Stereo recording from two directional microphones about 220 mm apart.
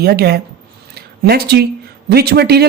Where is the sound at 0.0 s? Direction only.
45° right (ahead or behind).